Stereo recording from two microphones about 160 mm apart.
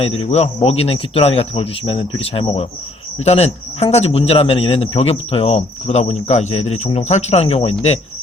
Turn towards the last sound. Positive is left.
turn(degrees=40)  # may be behind; listen again after turning